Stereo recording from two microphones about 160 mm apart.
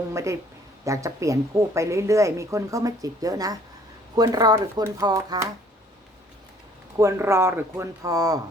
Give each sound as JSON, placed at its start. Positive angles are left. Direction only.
{"t": 0.1, "sound": "speech", "side_deg": -20}
{"t": 7.0, "sound": "speech", "side_deg": -15}